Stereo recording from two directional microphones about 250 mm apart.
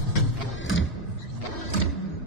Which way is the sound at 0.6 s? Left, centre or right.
Left.